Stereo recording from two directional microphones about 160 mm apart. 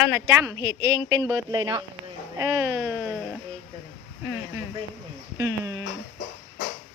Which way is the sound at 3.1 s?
Centre (ahead or behind).